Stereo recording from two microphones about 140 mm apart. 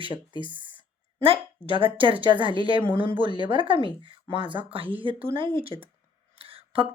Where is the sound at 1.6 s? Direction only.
35° right (ahead or behind).